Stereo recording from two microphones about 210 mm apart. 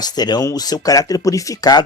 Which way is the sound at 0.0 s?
20° left (ahead or behind).